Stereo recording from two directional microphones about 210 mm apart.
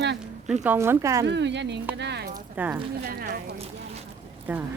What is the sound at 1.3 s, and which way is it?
Speech, 55° right (ahead or behind).